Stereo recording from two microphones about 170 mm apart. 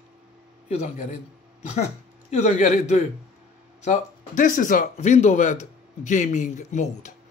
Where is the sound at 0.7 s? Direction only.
40° left (ahead or behind).